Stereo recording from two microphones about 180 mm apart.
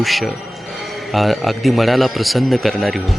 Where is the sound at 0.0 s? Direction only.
Centre (ahead or behind).